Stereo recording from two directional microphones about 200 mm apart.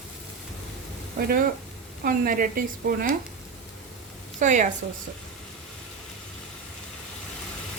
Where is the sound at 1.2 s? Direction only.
45° right (ahead or behind).